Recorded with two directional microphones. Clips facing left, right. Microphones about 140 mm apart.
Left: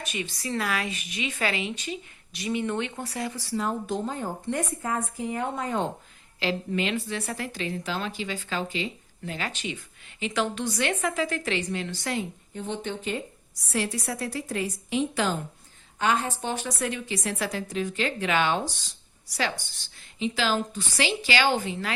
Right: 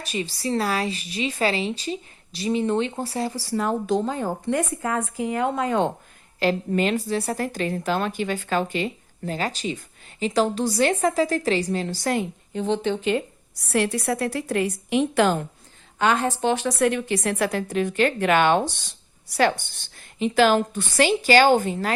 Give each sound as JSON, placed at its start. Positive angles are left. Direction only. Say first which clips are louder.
{"t": 0.0, "sound": "a woman's voice", "louder": "right 5 dB", "side_deg": -35}
{"t": 3.5, "sound": "a woman's voice", "louder": "right 6 dB", "side_deg": -65}
{"t": 6.4, "sound": "a woman's voice", "louder": "right 6 dB", "side_deg": -45}
{"t": 12.5, "sound": "a woman's voice", "louder": "right 9 dB", "side_deg": -90}
{"t": 13.7, "sound": "a woman's voice", "louder": "right 7 dB", "side_deg": -60}
{"t": 16.4, "sound": "a woman's voice", "louder": "right 8 dB", "side_deg": -90}
{"t": 16.8, "sound": "a woman's voice", "louder": "right 9 dB", "side_deg": -60}